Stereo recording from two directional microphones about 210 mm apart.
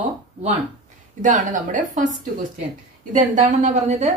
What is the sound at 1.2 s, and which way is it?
A woman's voice, 35° right (ahead or behind).